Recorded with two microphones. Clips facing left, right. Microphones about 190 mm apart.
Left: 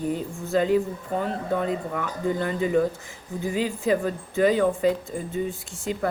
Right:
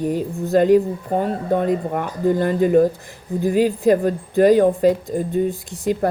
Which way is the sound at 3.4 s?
60° right (ahead or behind).